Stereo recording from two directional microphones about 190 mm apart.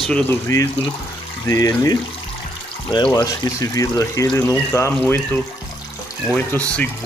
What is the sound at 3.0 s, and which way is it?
Speech, 15° left (ahead or behind).